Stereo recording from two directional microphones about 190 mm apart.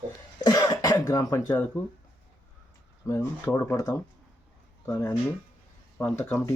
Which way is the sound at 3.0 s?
15° left (ahead or behind).